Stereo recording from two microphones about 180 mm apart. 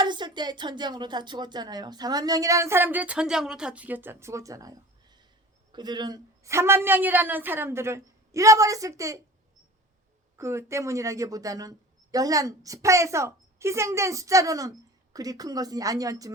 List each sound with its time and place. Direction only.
0.0 s a woman's voice: 25° right (ahead or behind)
10.3 s a woman's voice: 15° right (ahead or behind)